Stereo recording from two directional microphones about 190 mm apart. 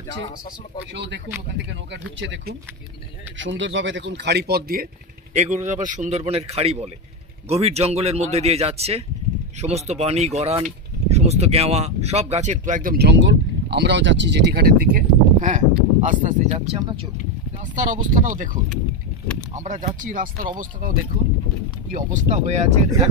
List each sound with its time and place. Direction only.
0.9 s speech: 70° right (ahead or behind); by 4.8 s 55° right (ahead or behind)
5.3 s speech: 35° right (ahead or behind)
17.7 s speech: 45° right (ahead or behind)